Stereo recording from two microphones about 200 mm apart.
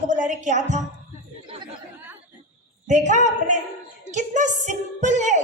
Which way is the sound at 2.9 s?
35° right (ahead or behind).